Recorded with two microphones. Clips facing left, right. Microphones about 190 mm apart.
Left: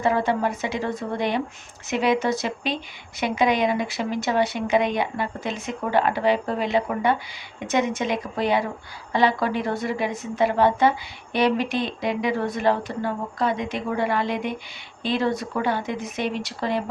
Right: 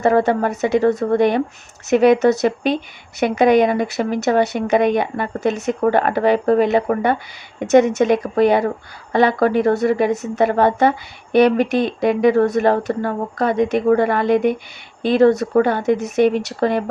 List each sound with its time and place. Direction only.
0.3 s speech: 45° right (ahead or behind)